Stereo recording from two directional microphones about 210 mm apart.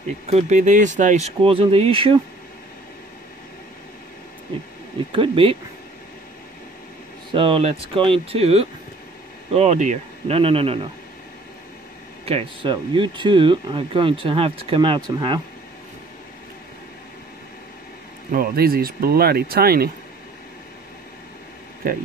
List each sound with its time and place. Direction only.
0.3 s speech: 30° right (ahead or behind)
5.1 s speech: 25° right (ahead or behind)
7.3 s speech: 25° right (ahead or behind)
12.3 s speech: 25° right (ahead or behind)
18.3 s speech: 45° right (ahead or behind)